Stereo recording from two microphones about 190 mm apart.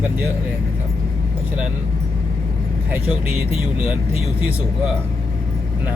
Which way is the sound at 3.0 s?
30° left (ahead or behind).